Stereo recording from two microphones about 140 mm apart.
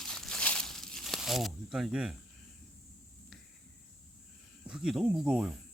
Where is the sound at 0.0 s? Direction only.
5° left (ahead or behind).